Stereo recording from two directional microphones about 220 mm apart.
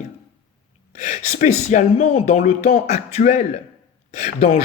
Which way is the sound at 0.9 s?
35° left (ahead or behind).